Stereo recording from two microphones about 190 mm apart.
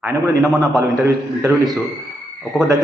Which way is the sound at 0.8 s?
15° right (ahead or behind).